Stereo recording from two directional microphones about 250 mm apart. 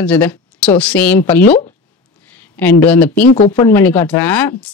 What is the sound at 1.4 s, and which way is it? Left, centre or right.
Speech, left.